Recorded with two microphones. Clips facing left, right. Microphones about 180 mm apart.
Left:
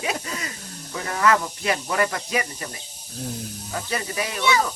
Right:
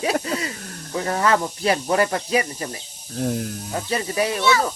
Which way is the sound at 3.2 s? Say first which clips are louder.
Right 8 dB; 70° right (ahead or behind).